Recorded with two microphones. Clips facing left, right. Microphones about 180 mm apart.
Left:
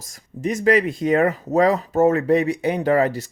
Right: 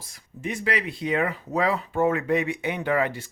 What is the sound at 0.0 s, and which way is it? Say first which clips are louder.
Speech: left 7 dB; 45° left (ahead or behind).